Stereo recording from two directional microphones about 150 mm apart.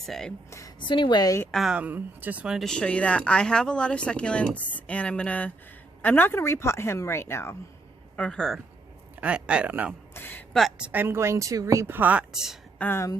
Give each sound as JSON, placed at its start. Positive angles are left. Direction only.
{"t": 0.0, "sound": "speech", "side_deg": 5}
{"t": 0.8, "sound": "a woman's voice", "side_deg": 30}
{"t": 1.5, "sound": "speech", "side_deg": 0}
{"t": 8.1, "sound": "speech", "side_deg": 5}
{"t": 9.2, "sound": "a woman's voice", "side_deg": -5}
{"t": 10.2, "sound": "speech", "side_deg": 15}
{"t": 10.5, "sound": "a woman's voice", "side_deg": -5}
{"t": 12.8, "sound": "speech", "side_deg": 15}